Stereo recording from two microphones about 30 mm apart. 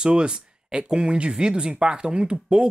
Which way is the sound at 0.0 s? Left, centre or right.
Right.